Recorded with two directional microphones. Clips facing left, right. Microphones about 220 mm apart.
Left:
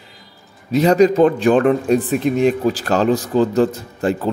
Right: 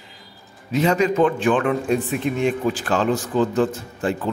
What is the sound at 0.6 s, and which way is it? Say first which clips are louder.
A man's voice: left 6 dB; 35° left (ahead or behind).